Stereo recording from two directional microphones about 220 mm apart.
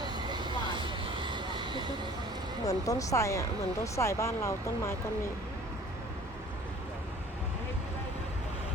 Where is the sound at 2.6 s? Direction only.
15° left (ahead or behind).